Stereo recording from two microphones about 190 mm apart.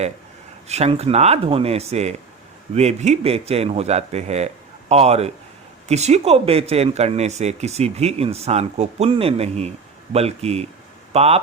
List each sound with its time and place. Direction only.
0.7 s speech: 35° right (ahead or behind)